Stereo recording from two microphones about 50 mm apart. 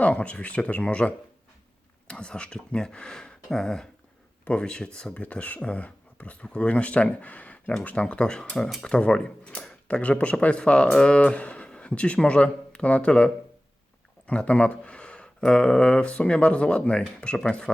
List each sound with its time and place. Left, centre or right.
0.0 s speech: left; by 3.8 s centre
4.4 s speech: centre
5.2 s speech: left